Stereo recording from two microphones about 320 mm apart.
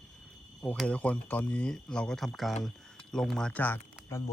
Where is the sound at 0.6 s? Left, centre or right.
Centre.